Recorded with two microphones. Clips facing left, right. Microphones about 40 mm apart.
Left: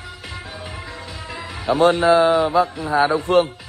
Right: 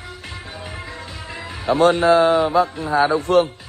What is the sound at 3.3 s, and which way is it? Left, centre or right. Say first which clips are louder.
Speech: even; left.